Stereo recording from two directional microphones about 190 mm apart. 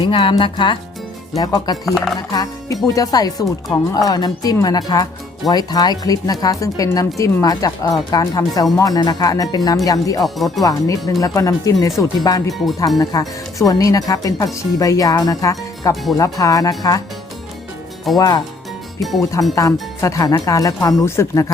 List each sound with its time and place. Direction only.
0.0 s speech: 25° left (ahead or behind)
1.8 s speech: centre (ahead or behind)
2.3 s speech: 20° left (ahead or behind)
10.2 s speech: centre (ahead or behind)
10.6 s speech: 20° left (ahead or behind)
18.2 s speech: 20° left (ahead or behind)